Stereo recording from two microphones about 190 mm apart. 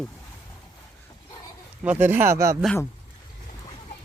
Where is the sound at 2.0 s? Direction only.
15° right (ahead or behind).